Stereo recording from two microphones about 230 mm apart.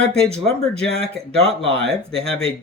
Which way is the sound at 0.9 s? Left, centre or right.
Right.